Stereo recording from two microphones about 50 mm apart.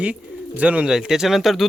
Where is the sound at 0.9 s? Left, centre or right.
Centre.